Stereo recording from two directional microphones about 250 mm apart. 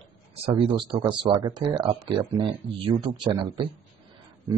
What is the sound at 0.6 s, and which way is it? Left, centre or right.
Speech, centre.